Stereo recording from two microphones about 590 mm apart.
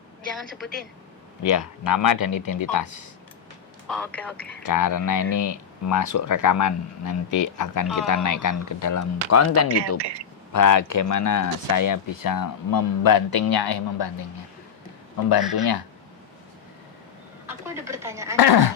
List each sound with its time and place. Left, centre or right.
0.3 s speech: centre
1.4 s speech: left
3.8 s speech: centre
4.6 s speech: left
15.3 s speech: left
17.5 s speech: centre
18.3 s speech: left